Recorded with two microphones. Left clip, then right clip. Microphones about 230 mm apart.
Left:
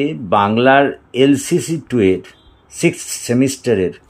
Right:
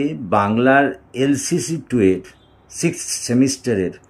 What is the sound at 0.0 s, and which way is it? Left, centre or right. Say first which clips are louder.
Speech: left 3 dB; left.